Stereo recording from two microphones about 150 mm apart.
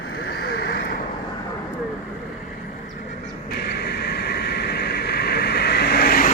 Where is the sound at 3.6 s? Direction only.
90° left.